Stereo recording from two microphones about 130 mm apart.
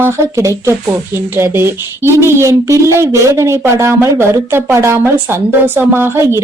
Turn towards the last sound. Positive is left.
turn(degrees=-20)  # may be behind; listen again after turning